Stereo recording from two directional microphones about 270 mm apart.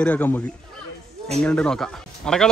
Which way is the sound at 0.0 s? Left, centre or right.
Centre.